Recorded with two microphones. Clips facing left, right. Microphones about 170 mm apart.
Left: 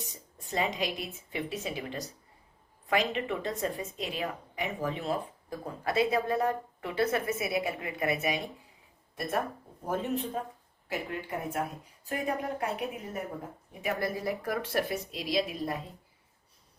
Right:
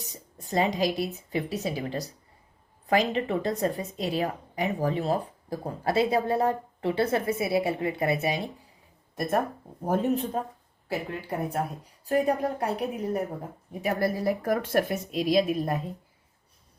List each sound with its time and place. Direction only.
0.0 s speech: 40° right (ahead or behind)
9.1 s speech: 45° right (ahead or behind)